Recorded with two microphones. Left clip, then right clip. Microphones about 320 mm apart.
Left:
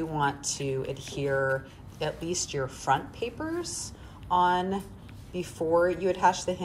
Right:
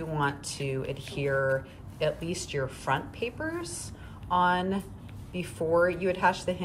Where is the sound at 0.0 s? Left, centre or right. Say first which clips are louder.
Left 2 dB; centre.